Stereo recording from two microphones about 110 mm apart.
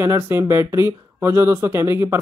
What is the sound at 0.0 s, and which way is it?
Speech, 25° right (ahead or behind).